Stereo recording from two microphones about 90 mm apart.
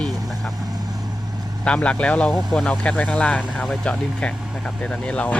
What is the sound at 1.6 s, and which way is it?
Speech, 15° left (ahead or behind).